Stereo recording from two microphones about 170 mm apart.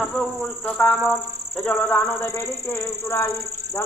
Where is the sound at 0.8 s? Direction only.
10° left (ahead or behind).